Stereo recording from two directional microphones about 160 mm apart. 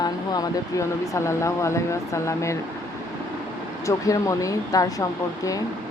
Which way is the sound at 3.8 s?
20° left (ahead or behind).